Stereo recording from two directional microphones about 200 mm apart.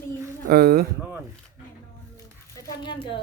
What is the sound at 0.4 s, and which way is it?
Speech, 50° right (ahead or behind).